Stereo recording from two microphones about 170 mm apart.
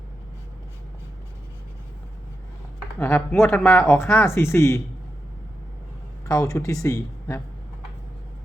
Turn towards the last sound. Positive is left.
turn(degrees=15)  # may be behind; listen again after turning